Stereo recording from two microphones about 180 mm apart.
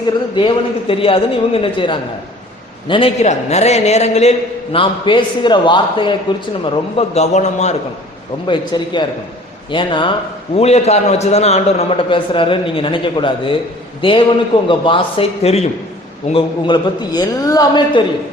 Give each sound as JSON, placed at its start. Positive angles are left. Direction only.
{"t": 0.3, "sound": "a man's voice", "side_deg": 30}
{"t": 6.9, "sound": "a man's voice", "side_deg": 35}
{"t": 8.4, "sound": "a man's voice", "side_deg": 25}